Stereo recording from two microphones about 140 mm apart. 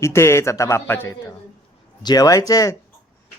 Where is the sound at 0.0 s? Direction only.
20° left (ahead or behind).